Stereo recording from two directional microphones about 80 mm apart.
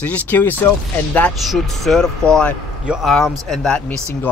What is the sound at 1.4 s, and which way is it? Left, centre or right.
Speech, centre.